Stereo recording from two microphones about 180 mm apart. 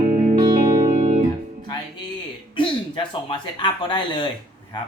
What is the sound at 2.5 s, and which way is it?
Speech, 25° left (ahead or behind).